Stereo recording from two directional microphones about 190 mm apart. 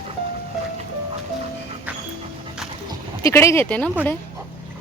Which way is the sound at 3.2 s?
15° left (ahead or behind).